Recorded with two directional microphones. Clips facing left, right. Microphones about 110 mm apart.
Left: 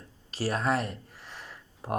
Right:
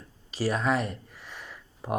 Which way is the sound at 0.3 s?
Centre (ahead or behind).